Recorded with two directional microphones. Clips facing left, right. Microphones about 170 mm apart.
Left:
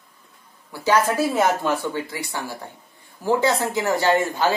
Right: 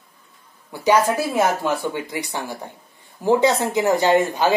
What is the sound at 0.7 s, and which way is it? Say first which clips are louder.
Speech: right 2 dB; 15° right (ahead or behind).